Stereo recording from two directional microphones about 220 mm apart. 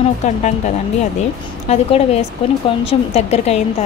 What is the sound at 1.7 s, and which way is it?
A woman's voice, 25° left (ahead or behind).